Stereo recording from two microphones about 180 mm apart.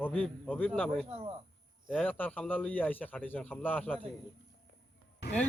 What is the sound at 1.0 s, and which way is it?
Speech, 35° right (ahead or behind).